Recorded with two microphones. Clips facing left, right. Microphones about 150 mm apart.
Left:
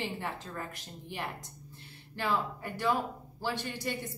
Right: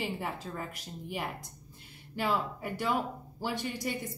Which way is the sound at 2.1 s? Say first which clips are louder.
Right 1 dB; 10° right (ahead or behind).